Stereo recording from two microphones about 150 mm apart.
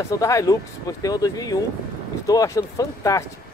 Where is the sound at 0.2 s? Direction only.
20° left (ahead or behind).